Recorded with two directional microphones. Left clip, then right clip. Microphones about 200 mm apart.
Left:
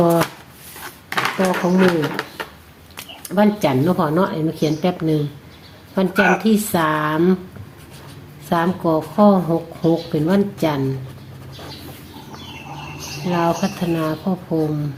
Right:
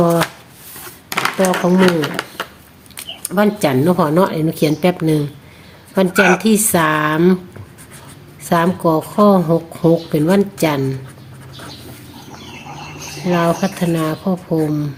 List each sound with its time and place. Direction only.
0.0 s speech: 10° right (ahead or behind)
1.1 s speech: 35° right (ahead or behind)
2.9 s speech: 20° right (ahead or behind)
8.4 s speech: 30° right (ahead or behind)
12.6 s speech: 35° right (ahead or behind)